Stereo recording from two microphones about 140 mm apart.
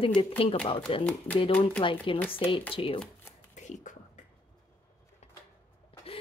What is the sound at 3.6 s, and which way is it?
Beatboxing, 60° left (ahead or behind).